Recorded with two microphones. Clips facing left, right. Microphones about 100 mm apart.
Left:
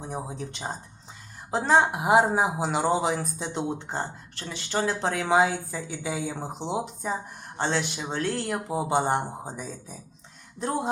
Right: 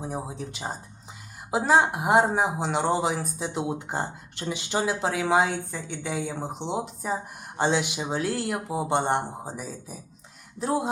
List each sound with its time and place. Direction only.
0.0 s speech: 5° right (ahead or behind)